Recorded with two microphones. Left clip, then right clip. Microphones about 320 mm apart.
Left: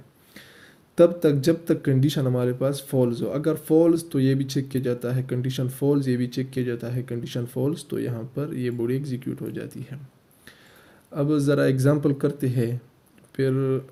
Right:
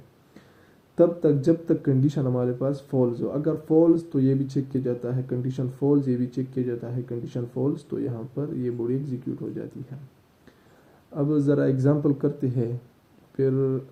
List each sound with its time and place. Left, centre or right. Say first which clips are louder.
0.9 s speech: left 2 dB; left
11.1 s speech: left 1 dB; left
11.9 s speech: left 1 dB; left
12.4 s speech: left 1 dB; left